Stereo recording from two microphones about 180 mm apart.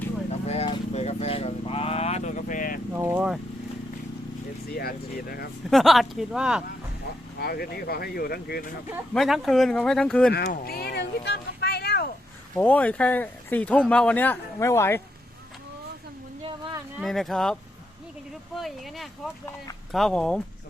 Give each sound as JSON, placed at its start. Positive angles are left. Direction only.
{"t": 0.4, "sound": "vehicle", "side_deg": 35}
{"t": 2.9, "sound": "vehicle", "side_deg": -10}
{"t": 4.7, "sound": "speech", "side_deg": 55}
{"t": 5.7, "sound": "speech", "side_deg": 0}
{"t": 7.3, "sound": "speech", "side_deg": 60}
{"t": 9.1, "sound": "speech", "side_deg": 0}
{"t": 10.3, "sound": "a sound", "side_deg": 60}
{"t": 12.5, "sound": "speech", "side_deg": 10}
{"t": 16.4, "sound": "a sound", "side_deg": -30}
{"t": 17.0, "sound": "speech", "side_deg": 0}